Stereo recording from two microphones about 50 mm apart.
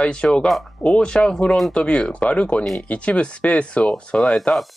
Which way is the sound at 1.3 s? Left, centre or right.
Centre.